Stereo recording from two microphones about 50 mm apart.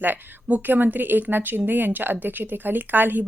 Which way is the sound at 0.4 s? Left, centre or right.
Right.